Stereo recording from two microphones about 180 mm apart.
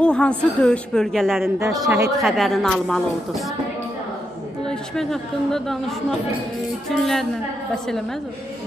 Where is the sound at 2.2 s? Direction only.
Centre (ahead or behind).